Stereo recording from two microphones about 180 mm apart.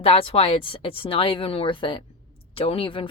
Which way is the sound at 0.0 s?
30° left (ahead or behind).